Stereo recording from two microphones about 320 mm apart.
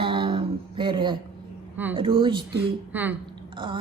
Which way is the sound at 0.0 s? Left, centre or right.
Centre.